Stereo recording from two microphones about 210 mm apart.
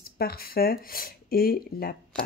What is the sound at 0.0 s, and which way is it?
Speech, 45° left (ahead or behind).